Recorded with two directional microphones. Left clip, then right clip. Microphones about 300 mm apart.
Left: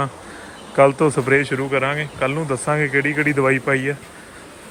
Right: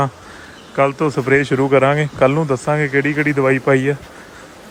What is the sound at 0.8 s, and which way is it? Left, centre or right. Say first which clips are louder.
A man's voice: left 2 dB; centre.